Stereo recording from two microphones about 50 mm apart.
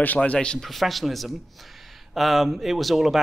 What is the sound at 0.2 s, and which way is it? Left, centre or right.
Speech, left.